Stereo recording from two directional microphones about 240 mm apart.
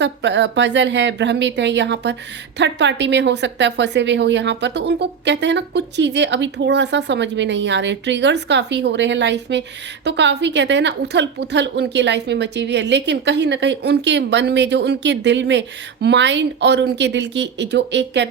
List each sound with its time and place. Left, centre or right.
0.0 s a woman's voice: right